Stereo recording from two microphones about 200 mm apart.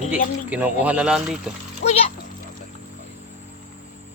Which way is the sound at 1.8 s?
60° left (ahead or behind).